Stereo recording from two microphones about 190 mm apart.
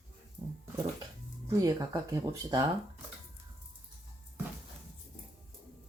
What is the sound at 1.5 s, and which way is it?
Speech, 20° right (ahead or behind).